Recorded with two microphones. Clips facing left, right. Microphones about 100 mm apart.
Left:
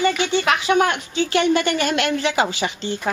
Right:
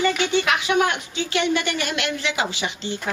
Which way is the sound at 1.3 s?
40° left (ahead or behind).